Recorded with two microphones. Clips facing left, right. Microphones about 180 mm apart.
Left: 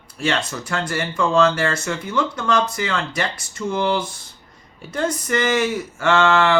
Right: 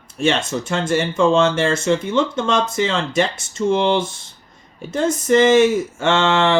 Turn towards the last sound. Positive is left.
turn(degrees=-20)  # may be behind; listen again after turning